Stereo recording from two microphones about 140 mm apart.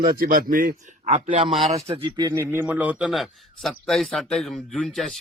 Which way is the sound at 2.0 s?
30° right (ahead or behind).